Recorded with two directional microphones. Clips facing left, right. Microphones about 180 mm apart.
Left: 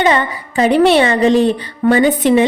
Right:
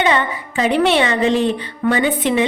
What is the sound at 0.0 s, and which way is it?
A woman's voice, 40° left (ahead or behind).